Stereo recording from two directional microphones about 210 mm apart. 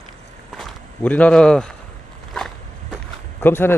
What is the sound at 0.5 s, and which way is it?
Walk, 5° left (ahead or behind).